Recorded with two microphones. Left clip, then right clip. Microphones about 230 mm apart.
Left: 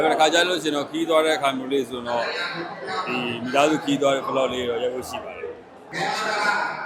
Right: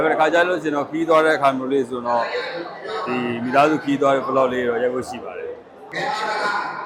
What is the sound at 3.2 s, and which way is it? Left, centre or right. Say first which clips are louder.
A man's voice: right 4 dB; right.